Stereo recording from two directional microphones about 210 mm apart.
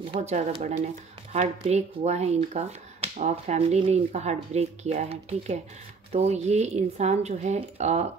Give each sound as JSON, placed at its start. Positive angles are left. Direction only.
{"t": 0.1, "sound": "speech", "side_deg": -30}